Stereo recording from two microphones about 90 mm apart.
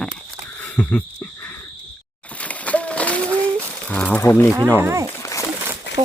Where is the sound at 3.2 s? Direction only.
25° right (ahead or behind).